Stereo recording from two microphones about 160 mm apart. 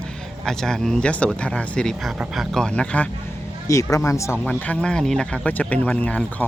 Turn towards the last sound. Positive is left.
turn(degrees=10)  # may be behind; listen again after turning